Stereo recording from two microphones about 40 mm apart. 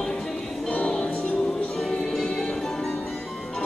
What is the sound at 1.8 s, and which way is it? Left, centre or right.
Music, centre.